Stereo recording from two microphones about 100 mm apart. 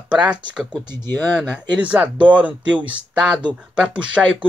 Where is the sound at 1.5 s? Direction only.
15° right (ahead or behind).